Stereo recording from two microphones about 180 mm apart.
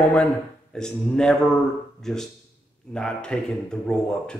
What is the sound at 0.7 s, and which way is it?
Speech, 5° left (ahead or behind).